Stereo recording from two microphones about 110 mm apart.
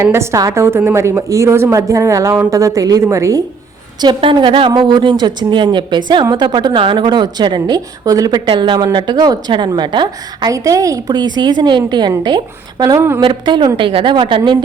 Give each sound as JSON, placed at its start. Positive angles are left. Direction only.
{"t": 0.0, "sound": "a woman's voice", "side_deg": -25}
{"t": 4.0, "sound": "a woman's voice", "side_deg": -45}
{"t": 8.4, "sound": "a woman's voice", "side_deg": -45}
{"t": 9.1, "sound": "a woman's voice", "side_deg": -35}
{"t": 9.5, "sound": "a woman's voice", "side_deg": -45}
{"t": 10.5, "sound": "a woman's voice", "side_deg": -30}
{"t": 13.0, "sound": "a woman's voice", "side_deg": -20}
{"t": 13.2, "sound": "a woman's voice", "side_deg": -45}